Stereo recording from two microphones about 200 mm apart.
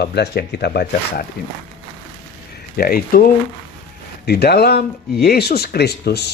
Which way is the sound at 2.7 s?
45° left (ahead or behind).